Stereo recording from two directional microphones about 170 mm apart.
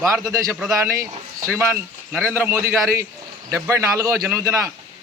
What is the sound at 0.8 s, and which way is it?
Speech, 15° right (ahead or behind).